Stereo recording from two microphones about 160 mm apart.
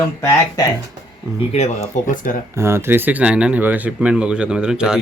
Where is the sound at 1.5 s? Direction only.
40° left (ahead or behind).